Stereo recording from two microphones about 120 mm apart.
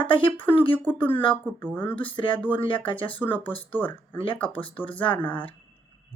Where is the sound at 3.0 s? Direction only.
15° left (ahead or behind).